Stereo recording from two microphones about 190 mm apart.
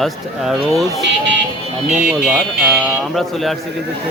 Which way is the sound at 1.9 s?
40° right (ahead or behind).